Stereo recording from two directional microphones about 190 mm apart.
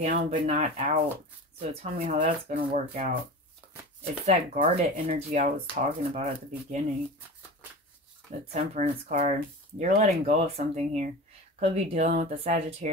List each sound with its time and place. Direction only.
0.0 s speech: 40° right (ahead or behind)
8.5 s speech: 40° right (ahead or behind)